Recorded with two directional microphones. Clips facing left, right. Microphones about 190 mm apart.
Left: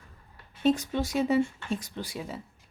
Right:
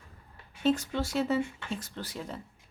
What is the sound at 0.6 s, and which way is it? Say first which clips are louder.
Speech: left 2 dB; 15° left (ahead or behind).